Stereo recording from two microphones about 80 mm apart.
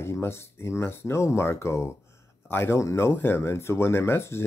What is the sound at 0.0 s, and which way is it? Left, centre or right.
Speech, left.